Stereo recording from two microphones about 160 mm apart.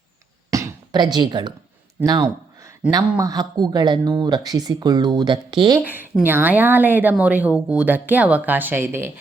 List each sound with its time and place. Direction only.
0.5 s speech: 25° right (ahead or behind)
2.0 s a sound: 25° right (ahead or behind)
3.2 s speech: 25° right (ahead or behind)
5.8 s a woman's voice: 10° right (ahead or behind)